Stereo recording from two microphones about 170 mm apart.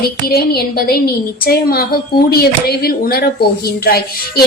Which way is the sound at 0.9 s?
65° left (ahead or behind).